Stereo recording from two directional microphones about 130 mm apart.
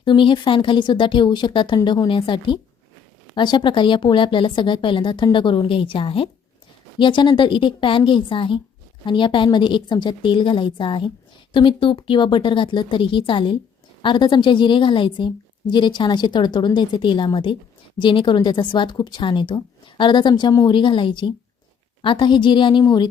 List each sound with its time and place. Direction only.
0.0 s a woman's voice: 40° left (ahead or behind)